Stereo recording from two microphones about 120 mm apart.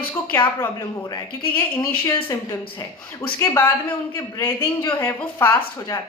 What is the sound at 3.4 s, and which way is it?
A woman's voice, 20° left (ahead or behind).